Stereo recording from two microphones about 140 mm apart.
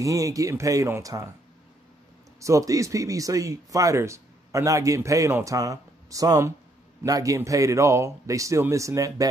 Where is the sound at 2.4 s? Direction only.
20° right (ahead or behind).